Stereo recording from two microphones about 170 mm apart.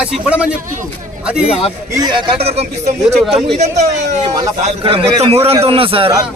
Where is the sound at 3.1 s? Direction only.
Centre (ahead or behind).